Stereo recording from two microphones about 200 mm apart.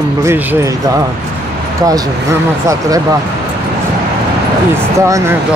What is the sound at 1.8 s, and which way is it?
Speech, 20° right (ahead or behind).